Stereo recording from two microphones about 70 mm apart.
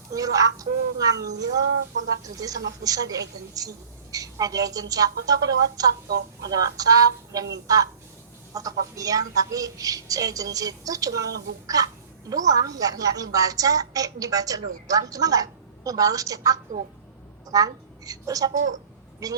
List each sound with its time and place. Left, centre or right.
0.1 s a woman's voice: right